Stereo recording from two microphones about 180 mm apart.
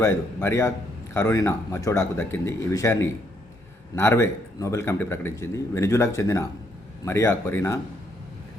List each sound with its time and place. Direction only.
0.0 s speech: 15° left (ahead or behind)